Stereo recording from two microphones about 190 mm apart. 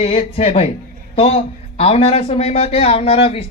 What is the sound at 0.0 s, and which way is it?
A man's voice, 30° left (ahead or behind).